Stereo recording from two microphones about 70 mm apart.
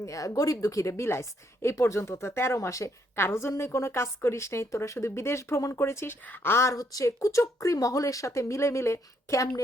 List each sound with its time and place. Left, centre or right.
0.0 s a woman's voice: left
6.2 s a woman's voice: left
6.7 s speech: left